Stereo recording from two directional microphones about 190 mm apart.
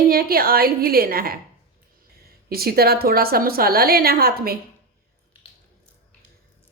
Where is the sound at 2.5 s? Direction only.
55° right (ahead or behind).